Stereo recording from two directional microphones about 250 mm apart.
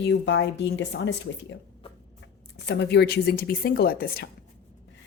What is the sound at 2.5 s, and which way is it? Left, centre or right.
Speech, left.